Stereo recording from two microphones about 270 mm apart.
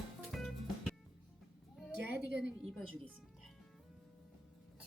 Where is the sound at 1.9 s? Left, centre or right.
Right.